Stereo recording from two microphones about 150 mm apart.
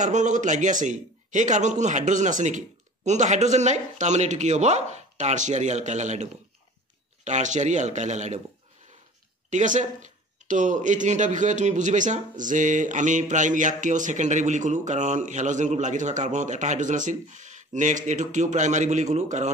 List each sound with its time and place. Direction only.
0.0 s speech: 55° right (ahead or behind)
7.2 s speech: 50° right (ahead or behind)
9.5 s a man's voice: 55° right (ahead or behind)